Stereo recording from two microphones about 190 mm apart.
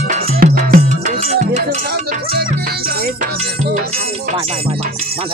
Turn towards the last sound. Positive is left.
turn(degrees=-55)  # may be behind; listen again after turning